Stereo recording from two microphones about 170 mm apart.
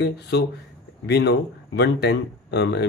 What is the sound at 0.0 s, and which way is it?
Speech, 80° left.